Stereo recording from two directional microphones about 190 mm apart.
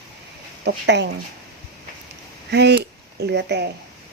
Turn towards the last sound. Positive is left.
turn(degrees=-65)  # may be behind; listen again after turning